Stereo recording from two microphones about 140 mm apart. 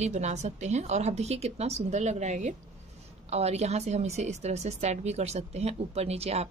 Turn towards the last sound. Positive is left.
turn(degrees=-50)  # may be behind; listen again after turning